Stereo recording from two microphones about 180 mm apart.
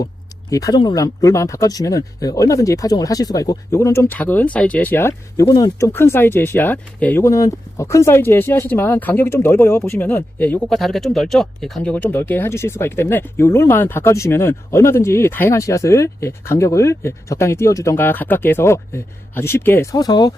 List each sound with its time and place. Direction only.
0.5 s speech: 20° left (ahead or behind)